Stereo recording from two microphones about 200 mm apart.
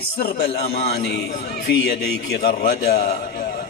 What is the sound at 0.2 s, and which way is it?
A man's voice, 50° left (ahead or behind).